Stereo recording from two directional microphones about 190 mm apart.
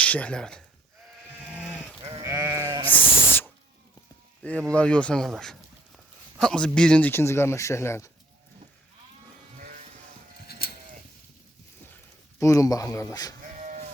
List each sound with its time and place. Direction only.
0.0 s speech: 5° left (ahead or behind)
1.5 s sheep: 5° right (ahead or behind)
2.8 s sheep: 10° left (ahead or behind)
4.4 s speech: 5° left (ahead or behind)
10.4 s sheep: 55° left (ahead or behind)
12.4 s speech: 15° left (ahead or behind)
13.6 s chop: 45° right (ahead or behind)